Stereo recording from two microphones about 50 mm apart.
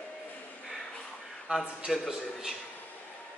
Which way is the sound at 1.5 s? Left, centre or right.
Right.